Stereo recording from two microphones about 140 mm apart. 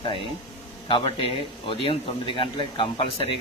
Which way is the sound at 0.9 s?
35° left (ahead or behind).